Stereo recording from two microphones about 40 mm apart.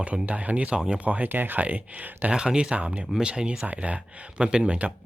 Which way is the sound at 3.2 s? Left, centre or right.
Right.